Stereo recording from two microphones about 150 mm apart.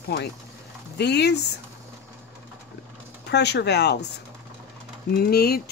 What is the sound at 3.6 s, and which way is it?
Speech, 90° left.